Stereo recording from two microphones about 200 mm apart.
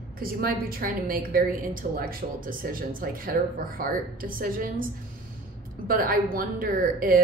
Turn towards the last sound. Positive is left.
turn(degrees=-45)  # may be behind; listen again after turning